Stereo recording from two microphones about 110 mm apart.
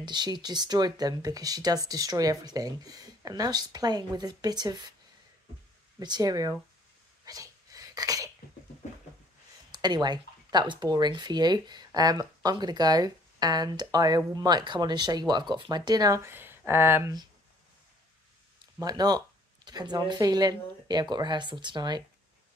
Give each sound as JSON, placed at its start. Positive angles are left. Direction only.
{"t": 0.0, "sound": "speech", "side_deg": -40}
{"t": 5.9, "sound": "speech", "side_deg": -35}
{"t": 7.2, "sound": "sneeze", "side_deg": -30}
{"t": 9.7, "sound": "speech", "side_deg": -40}
{"t": 16.2, "sound": "speech", "side_deg": -20}
{"t": 18.8, "sound": "speech", "side_deg": -35}